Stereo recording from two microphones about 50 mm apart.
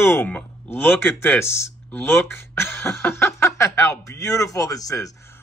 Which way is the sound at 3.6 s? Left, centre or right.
Left.